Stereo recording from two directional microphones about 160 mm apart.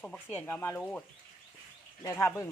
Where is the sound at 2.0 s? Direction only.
15° left (ahead or behind).